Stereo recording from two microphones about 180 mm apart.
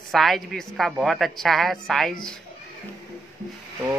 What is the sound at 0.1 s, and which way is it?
Speech, centre (ahead or behind).